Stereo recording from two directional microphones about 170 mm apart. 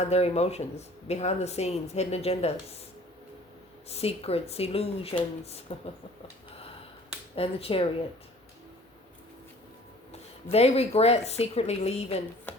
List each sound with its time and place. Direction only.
0.0 s speech: 40° left (ahead or behind)
3.8 s speech: 35° left (ahead or behind)
7.3 s speech: 35° left (ahead or behind)
10.1 s speech: 40° left (ahead or behind)